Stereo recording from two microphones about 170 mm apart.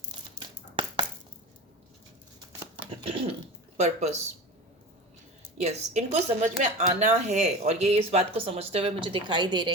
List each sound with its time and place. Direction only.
3.0 s speech: 35° right (ahead or behind)
5.6 s speech: 40° right (ahead or behind); by 9.7 s 25° right (ahead or behind)